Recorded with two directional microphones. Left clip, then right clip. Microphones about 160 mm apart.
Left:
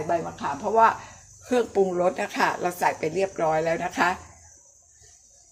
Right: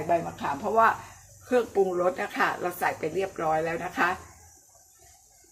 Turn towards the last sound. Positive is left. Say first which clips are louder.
# left 3 dB
turn(degrees=30)  # may be behind; listen again after turning